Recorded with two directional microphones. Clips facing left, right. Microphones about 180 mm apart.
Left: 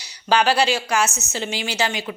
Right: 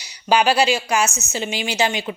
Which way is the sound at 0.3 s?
15° right (ahead or behind).